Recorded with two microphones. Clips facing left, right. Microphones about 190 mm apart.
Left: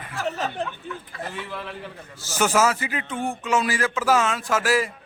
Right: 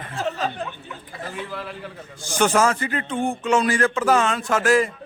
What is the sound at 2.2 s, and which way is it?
A man's voice, 5° left (ahead or behind).